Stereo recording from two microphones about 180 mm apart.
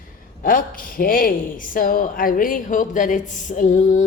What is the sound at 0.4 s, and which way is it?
Speech, 50° left (ahead or behind).